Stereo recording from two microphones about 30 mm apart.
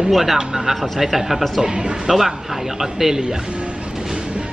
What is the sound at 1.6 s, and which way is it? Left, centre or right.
Speech, right.